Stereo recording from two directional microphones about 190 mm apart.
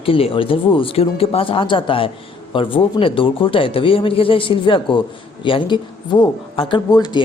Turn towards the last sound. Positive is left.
turn(degrees=20)  # may be behind; listen again after turning